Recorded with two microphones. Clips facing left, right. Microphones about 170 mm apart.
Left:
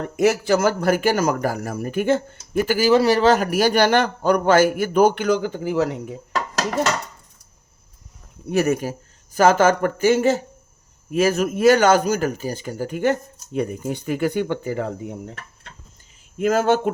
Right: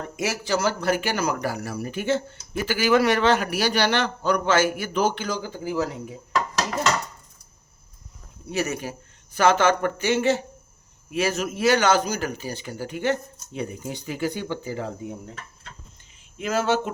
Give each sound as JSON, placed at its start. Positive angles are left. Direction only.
{"t": 0.2, "sound": "a man's voice", "side_deg": 55}
{"t": 8.4, "sound": "a man's voice", "side_deg": 55}
{"t": 16.4, "sound": "a man's voice", "side_deg": 50}